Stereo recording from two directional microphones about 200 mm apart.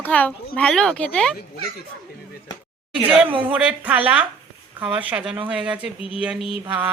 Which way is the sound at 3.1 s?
5° right (ahead or behind).